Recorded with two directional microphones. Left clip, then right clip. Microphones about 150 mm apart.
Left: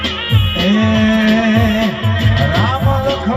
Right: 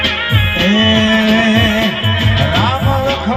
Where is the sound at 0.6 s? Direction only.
30° left (ahead or behind).